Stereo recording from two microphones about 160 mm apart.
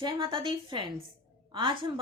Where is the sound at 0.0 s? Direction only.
30° right (ahead or behind).